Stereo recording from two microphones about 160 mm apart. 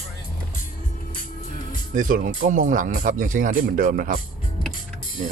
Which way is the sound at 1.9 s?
55° right (ahead or behind).